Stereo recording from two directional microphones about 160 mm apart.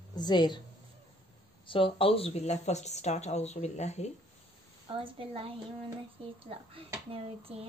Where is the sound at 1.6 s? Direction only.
35° left (ahead or behind).